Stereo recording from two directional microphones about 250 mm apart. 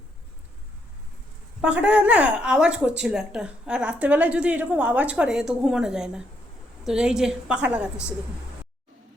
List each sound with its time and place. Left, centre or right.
1.6 s a woman's voice: centre